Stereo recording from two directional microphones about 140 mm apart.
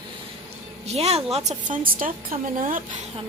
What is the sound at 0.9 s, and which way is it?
A woman's voice, 50° right (ahead or behind).